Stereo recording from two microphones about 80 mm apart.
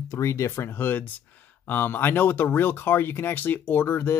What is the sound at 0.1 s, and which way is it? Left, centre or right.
Speech, left.